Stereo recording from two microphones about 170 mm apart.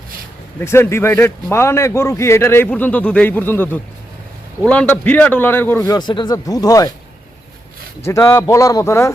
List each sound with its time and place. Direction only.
0.6 s a man's voice: 15° left (ahead or behind)
8.0 s a man's voice: 20° left (ahead or behind)